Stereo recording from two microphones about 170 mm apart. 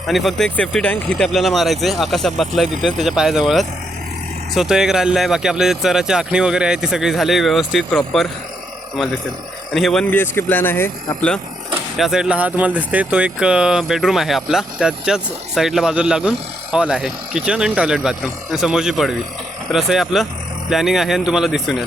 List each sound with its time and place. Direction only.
0.1 s speech: centre (ahead or behind)
9.7 s speech: centre (ahead or behind)
11.9 s speech: 5° right (ahead or behind)